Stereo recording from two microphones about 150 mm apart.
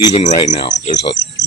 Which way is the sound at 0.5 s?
40° left (ahead or behind).